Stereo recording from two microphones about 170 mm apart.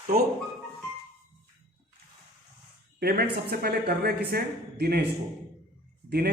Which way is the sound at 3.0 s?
65° right (ahead or behind).